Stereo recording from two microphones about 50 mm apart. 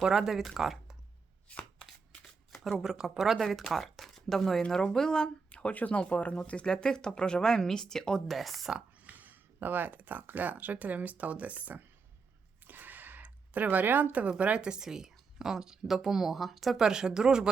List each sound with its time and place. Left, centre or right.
0.0 s a woman's voice: centre
1.5 s chopping: left
1.9 s shuffling cards: centre
3.4 s speech: centre
8.4 s speech: centre
9.0 s speech: right
12.6 s a sound: right
13.2 s speech: right
14.6 s a woman's voice: centre
16.8 s a woman's voice: centre